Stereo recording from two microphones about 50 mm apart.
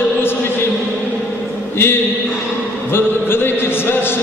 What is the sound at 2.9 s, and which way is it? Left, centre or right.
Music, left.